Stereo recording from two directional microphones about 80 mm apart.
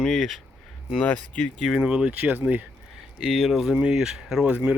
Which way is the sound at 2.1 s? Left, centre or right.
Right.